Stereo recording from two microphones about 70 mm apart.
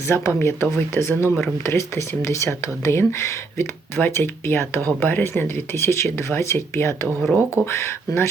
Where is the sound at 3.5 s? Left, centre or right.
Left.